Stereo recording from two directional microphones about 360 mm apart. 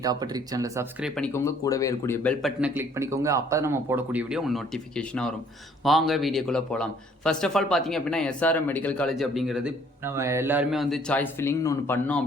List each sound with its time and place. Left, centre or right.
0.0 s speech: centre